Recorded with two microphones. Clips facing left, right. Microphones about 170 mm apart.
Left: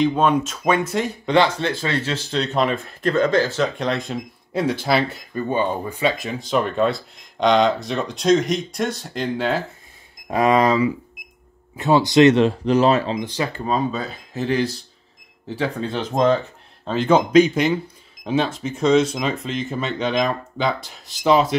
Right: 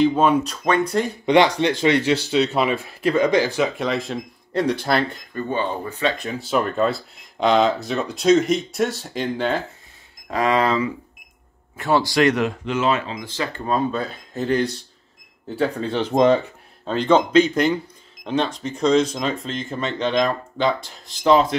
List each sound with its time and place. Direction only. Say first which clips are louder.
0.0 s speech: right 1 dB; 5° right (ahead or behind)
1.2 s speech: right 2 dB; 15° right (ahead or behind); by 9.6 s centre (ahead or behind)
10.2 s speech: left 3 dB; 20° left (ahead or behind); by 13.2 s 35° left (ahead or behind)
13.2 s speech: left 3 dB; 20° left (ahead or behind)
13.7 s speech: right 3 dB; centre (ahead or behind)